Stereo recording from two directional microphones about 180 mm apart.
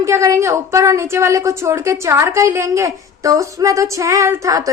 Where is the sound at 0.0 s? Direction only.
15° right (ahead or behind).